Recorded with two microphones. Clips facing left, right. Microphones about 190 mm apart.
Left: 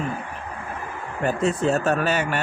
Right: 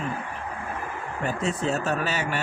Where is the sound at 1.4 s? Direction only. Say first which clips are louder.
Left 6 dB; 55° left (ahead or behind).